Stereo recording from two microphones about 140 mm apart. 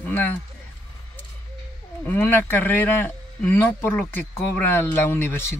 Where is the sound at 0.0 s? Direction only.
15° left (ahead or behind).